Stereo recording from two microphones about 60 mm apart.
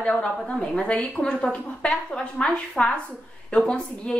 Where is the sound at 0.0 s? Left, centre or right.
Centre.